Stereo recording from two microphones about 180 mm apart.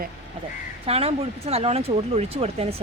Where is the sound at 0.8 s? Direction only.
35° right (ahead or behind).